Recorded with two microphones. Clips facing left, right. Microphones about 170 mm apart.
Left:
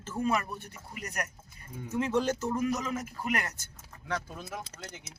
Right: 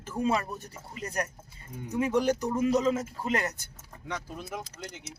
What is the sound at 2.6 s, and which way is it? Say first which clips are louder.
Speech: right 6 dB; 25° right (ahead or behind).